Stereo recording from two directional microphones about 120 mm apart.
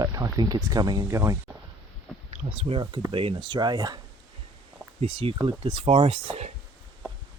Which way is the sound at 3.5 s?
35° right (ahead or behind).